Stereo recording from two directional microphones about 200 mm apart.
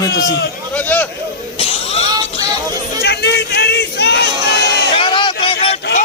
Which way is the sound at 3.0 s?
55° left (ahead or behind).